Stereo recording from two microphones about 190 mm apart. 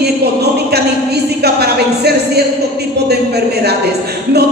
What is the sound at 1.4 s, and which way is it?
Speech, 60° right (ahead or behind).